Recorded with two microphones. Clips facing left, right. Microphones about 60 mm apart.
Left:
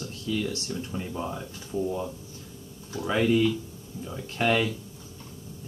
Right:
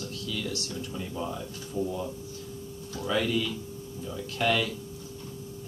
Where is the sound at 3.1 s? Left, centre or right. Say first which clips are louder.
Left 5 dB; left.